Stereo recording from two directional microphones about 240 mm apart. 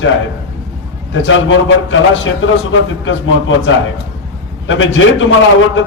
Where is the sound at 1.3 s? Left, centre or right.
Left.